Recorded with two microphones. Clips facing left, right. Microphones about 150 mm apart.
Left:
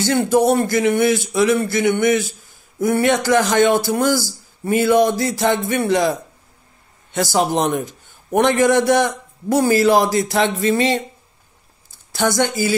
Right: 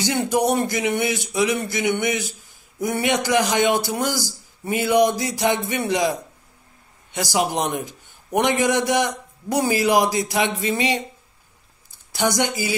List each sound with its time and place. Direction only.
0.0 s a man's voice: 15° right (ahead or behind)
12.1 s a man's voice: 15° right (ahead or behind)